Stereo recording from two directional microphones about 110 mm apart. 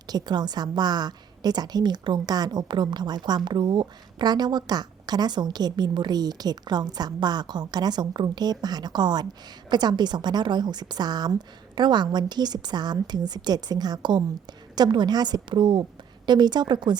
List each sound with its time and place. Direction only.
0.1 s a woman's voice: 40° right (ahead or behind)